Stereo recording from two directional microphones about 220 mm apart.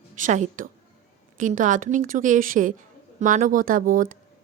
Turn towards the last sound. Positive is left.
turn(degrees=-35)  # may be behind; listen again after turning